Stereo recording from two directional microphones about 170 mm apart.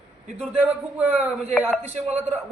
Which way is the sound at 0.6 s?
10° right (ahead or behind).